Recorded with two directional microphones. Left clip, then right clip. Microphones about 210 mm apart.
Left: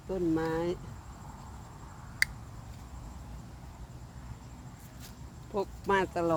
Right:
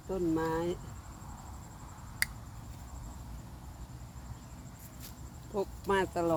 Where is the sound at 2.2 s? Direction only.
10° left (ahead or behind).